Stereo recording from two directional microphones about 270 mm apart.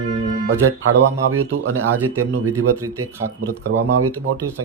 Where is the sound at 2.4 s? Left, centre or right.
Centre.